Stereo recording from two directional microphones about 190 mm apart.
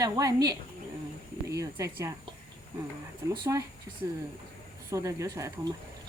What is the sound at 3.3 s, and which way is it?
Speech, 20° right (ahead or behind).